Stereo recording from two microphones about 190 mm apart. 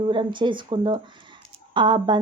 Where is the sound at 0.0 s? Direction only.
25° right (ahead or behind).